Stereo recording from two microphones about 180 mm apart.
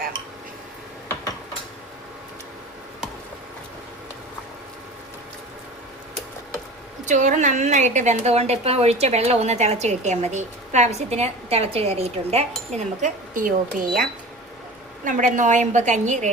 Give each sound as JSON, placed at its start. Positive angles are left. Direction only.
{"t": 7.0, "sound": "a woman's voice", "side_deg": -40}
{"t": 15.0, "sound": "a woman's voice", "side_deg": -45}